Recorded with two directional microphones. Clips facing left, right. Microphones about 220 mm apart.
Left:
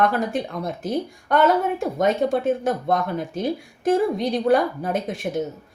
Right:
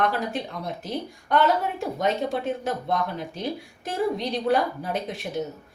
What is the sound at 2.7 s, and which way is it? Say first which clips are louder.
Speech: left 5 dB; 50° left (ahead or behind).